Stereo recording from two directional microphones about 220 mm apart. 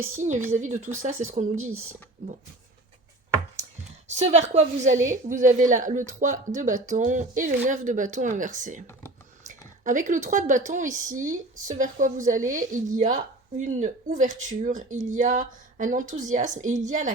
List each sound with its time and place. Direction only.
0.5 s speech: 35° right (ahead or behind)
4.1 s speech: 30° right (ahead or behind)